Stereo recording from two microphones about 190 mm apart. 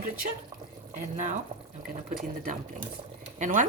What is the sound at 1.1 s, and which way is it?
Speech, 40° right (ahead or behind).